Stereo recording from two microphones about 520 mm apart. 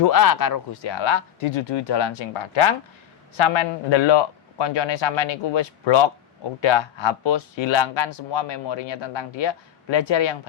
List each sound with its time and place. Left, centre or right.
0.0 s speech: left
0.9 s speech: left